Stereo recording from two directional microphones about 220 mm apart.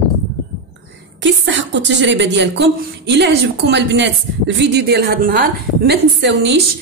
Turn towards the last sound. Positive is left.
turn(degrees=-50)  # may be behind; listen again after turning